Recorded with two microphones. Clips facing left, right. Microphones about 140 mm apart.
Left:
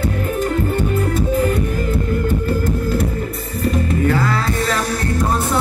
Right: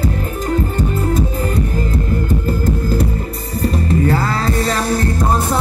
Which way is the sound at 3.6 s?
35° right (ahead or behind).